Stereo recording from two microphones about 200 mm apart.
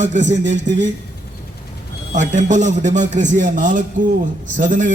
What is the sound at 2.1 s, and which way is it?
A man's voice, 40° right (ahead or behind).